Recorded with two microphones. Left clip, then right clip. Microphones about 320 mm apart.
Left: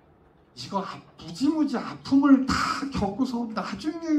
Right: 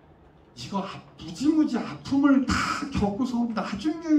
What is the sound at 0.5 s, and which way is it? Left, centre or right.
Speech, centre.